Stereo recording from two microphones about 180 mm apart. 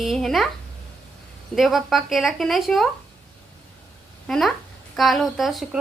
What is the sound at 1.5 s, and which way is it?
A woman's voice, centre (ahead or behind).